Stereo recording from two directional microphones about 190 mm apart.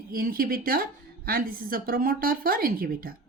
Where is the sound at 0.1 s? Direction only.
50° right (ahead or behind).